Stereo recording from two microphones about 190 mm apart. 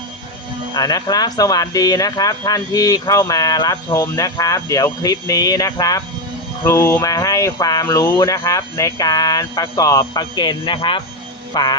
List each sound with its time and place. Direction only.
0.7 s speech: 20° left (ahead or behind)